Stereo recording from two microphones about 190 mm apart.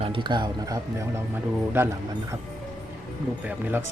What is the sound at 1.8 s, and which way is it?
Speech, 10° right (ahead or behind).